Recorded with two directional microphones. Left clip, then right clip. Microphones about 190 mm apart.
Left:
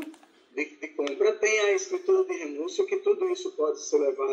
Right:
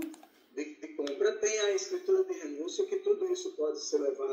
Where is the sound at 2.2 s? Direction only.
30° left (ahead or behind).